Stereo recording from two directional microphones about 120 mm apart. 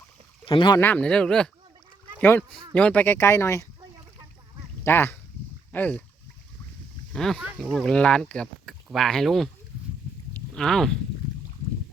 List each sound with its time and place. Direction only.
0.4 s speech: 40° left (ahead or behind)
0.8 s speech: 15° left (ahead or behind)
4.8 s speech: 20° left (ahead or behind)
7.1 s speech: 5° left (ahead or behind)
10.5 s speech: 5° left (ahead or behind)